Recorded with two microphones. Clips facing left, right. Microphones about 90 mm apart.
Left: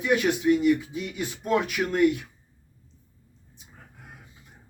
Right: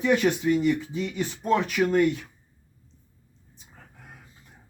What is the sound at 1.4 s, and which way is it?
Speech, 40° right (ahead or behind).